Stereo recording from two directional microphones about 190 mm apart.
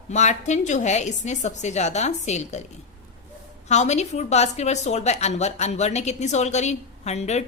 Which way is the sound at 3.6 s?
35° left (ahead or behind).